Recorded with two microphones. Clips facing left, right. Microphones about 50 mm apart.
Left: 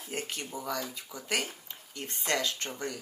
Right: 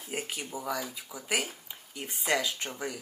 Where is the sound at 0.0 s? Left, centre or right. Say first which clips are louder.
Right 1 dB; centre.